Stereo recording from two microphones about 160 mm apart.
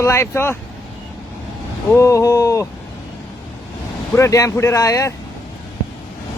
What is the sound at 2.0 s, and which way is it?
Speech, 20° left (ahead or behind).